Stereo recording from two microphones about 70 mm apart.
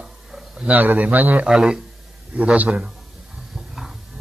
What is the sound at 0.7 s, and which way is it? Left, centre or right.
Speech, right.